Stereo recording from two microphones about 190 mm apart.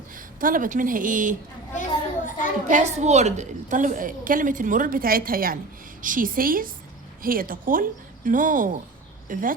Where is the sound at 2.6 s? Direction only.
40° right (ahead or behind).